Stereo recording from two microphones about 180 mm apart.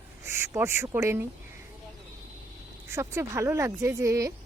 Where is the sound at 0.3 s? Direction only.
15° right (ahead or behind).